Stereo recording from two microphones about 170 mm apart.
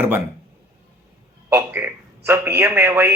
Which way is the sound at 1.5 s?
15° right (ahead or behind).